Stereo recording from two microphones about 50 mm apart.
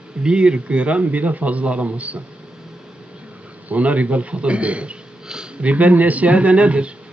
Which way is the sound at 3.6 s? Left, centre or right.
Right.